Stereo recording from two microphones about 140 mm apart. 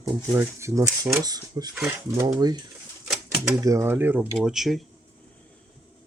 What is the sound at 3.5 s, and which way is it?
Speech, 20° right (ahead or behind).